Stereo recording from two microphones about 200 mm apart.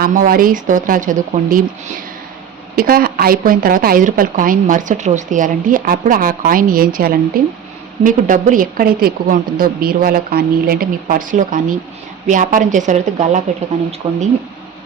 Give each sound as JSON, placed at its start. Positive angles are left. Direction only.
{"t": 0.0, "sound": "a woman's voice", "side_deg": -45}
{"t": 2.7, "sound": "a woman's voice", "side_deg": -45}
{"t": 14.0, "sound": "speech", "side_deg": -25}